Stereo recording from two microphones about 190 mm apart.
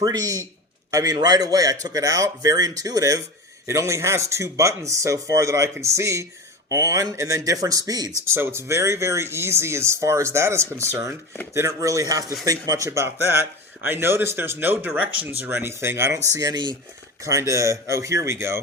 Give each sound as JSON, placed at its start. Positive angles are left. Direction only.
{"t": 0.0, "sound": "a man's voice", "side_deg": -20}